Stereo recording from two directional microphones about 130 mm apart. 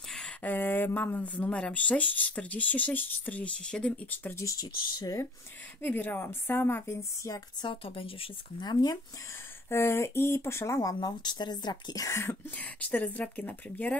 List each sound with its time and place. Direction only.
0.1 s a woman's voice: 10° left (ahead or behind)
4.5 s speech: 30° left (ahead or behind)
5.8 s a woman's voice: 15° left (ahead or behind)
7.8 s speech: 45° left (ahead or behind)
9.7 s speech: 20° left (ahead or behind)